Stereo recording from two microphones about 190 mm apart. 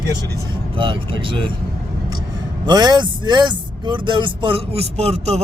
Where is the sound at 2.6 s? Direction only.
20° right (ahead or behind).